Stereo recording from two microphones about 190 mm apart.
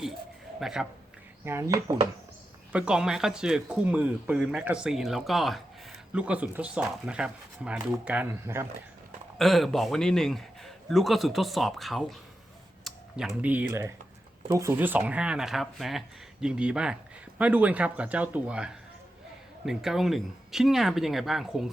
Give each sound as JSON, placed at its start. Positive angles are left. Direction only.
{"t": 0.6, "sound": "speech", "side_deg": -5}
{"t": 1.5, "sound": "speech", "side_deg": -15}
{"t": 2.7, "sound": "speech", "side_deg": -5}
{"t": 9.4, "sound": "speech", "side_deg": 0}